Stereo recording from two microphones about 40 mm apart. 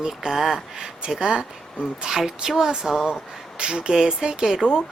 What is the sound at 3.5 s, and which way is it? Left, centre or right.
Speech, right.